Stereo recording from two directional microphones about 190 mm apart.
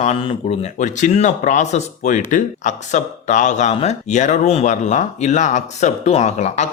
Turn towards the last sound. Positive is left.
turn(degrees=35)  # may be behind; listen again after turning